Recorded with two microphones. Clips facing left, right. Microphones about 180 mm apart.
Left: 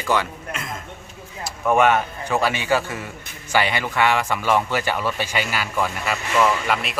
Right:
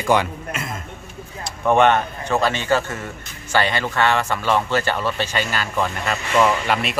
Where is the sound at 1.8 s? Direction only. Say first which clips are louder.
Right 1 dB; 10° left (ahead or behind).